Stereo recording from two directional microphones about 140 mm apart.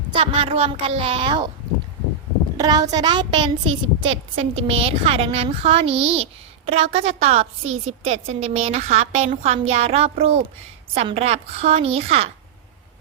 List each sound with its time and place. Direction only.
0.1 s a woman's voice: 45° right (ahead or behind)
2.6 s a woman's voice: 30° right (ahead or behind); by 12.3 s 45° right (ahead or behind)